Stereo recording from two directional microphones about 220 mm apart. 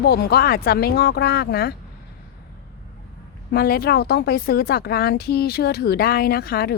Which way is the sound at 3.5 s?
45° left (ahead or behind).